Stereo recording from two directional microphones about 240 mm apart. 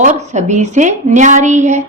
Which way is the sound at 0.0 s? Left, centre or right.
Right.